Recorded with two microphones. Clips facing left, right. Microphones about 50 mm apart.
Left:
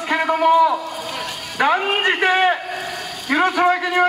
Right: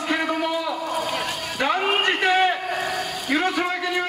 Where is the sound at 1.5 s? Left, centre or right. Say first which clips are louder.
Left 6 dB; centre.